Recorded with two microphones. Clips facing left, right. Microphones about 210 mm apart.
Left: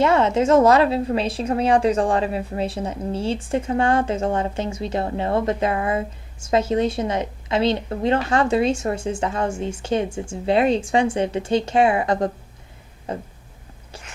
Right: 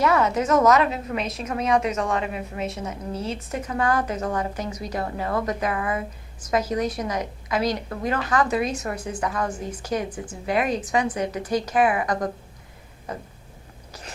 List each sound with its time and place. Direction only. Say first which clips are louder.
0.0 s a woman's voice: left 4 dB; 25° left (ahead or behind)